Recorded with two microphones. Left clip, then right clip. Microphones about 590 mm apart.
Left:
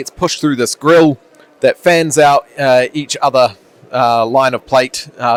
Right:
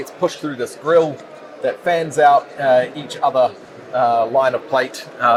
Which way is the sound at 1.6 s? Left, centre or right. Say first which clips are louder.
Left 8 dB; left.